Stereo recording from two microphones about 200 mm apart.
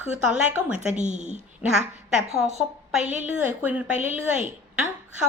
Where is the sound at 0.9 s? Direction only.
35° right (ahead or behind).